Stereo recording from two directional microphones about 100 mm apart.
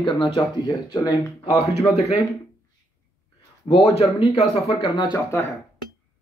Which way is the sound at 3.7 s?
85° left.